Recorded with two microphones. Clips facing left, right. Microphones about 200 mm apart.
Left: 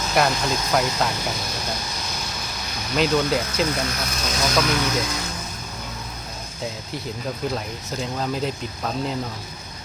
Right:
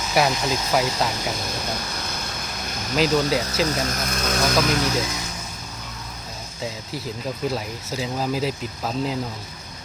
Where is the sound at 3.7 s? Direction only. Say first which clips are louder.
Right 1 dB; 45° right (ahead or behind).